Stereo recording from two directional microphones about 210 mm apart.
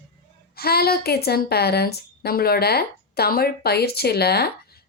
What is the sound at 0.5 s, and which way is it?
A woman's voice, 45° left (ahead or behind).